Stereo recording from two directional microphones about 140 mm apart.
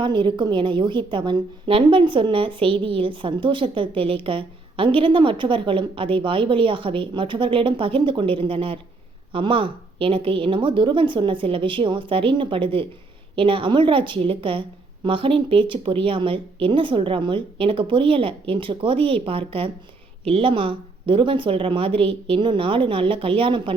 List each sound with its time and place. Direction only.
0.0 s a woman's voice: 35° right (ahead or behind)